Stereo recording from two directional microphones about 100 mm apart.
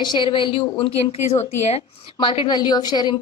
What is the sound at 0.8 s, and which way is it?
Speech, 90° left.